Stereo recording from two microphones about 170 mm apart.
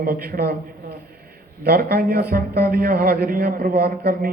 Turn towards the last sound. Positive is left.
turn(degrees=-65)  # may be behind; listen again after turning